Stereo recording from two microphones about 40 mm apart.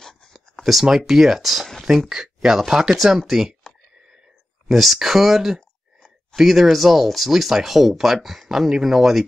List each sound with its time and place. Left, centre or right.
0.0 s a sound: centre
0.9 s speech: centre
4.6 s speech: centre